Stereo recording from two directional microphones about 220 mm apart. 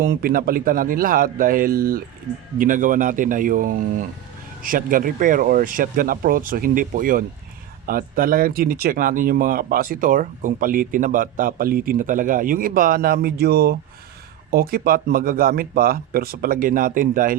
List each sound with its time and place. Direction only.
0.0 s speech: 40° right (ahead or behind)